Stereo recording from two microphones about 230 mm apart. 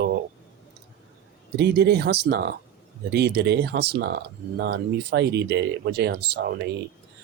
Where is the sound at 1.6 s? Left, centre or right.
Right.